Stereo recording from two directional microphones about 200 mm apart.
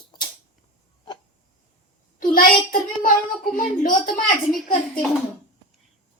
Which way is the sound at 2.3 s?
45° left (ahead or behind).